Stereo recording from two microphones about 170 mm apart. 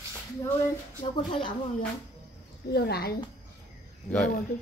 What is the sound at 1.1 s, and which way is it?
Speech, 30° left (ahead or behind).